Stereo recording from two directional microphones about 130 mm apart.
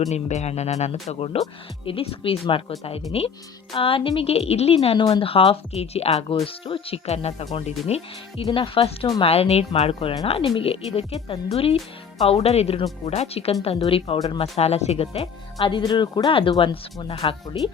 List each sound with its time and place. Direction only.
0.1 s speech: 60° left (ahead or behind)
15.5 s speech: 35° left (ahead or behind)